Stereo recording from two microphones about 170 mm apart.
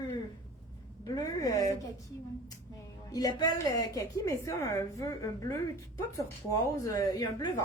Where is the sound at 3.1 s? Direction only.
20° left (ahead or behind).